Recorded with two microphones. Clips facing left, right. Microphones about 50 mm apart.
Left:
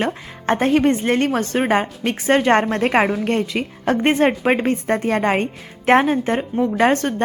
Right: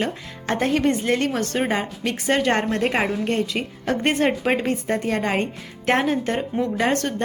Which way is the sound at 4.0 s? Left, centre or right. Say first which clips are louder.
Left 4 dB; left.